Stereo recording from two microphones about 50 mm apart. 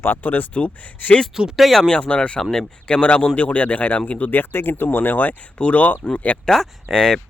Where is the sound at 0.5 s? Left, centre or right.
Left.